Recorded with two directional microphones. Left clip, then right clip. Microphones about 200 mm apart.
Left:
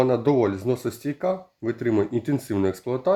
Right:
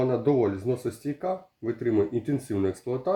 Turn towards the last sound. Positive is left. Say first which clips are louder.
# left 5 dB
turn(degrees=30)  # may be behind; listen again after turning